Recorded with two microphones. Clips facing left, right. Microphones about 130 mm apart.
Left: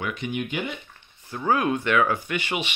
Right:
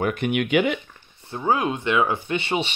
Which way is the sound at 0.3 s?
85° right.